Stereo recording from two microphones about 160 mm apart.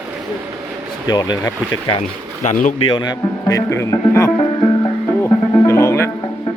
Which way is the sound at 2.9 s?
25° left (ahead or behind).